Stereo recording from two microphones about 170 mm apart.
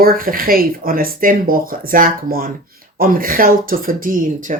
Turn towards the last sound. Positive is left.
turn(degrees=-50)  # may be behind; listen again after turning